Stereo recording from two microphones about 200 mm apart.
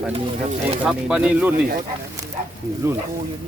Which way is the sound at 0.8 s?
5° right (ahead or behind).